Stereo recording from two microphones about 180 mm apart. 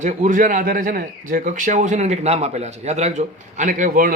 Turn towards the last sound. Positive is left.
turn(degrees=-50)  # may be behind; listen again after turning